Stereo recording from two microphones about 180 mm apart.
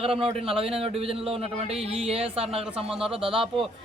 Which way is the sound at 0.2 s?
30° right (ahead or behind).